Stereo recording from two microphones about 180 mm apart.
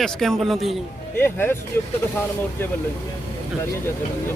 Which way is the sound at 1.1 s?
10° left (ahead or behind).